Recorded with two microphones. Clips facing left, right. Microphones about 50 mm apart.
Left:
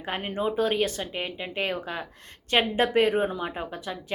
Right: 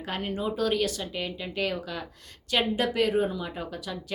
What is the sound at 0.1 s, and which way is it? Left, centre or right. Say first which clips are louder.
A woman's voice: left 2 dB; left.